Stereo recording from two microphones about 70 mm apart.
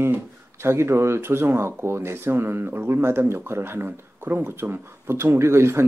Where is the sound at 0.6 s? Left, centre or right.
Right.